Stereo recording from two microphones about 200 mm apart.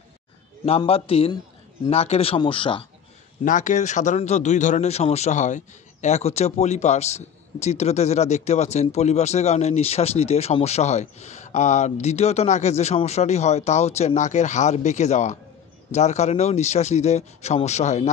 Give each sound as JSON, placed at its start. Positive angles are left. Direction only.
{"t": 0.7, "sound": "speech", "side_deg": 30}
{"t": 3.4, "sound": "speech", "side_deg": 40}